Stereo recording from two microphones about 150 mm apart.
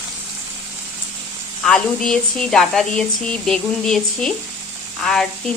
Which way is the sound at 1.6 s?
5° left (ahead or behind).